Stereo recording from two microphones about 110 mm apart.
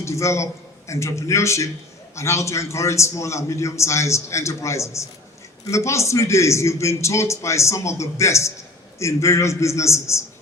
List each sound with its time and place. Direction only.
0.0 s a man's voice: 25° left (ahead or behind)